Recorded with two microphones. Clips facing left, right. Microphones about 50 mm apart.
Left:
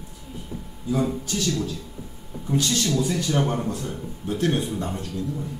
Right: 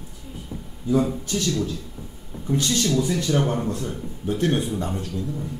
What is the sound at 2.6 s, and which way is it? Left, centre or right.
Speech, right.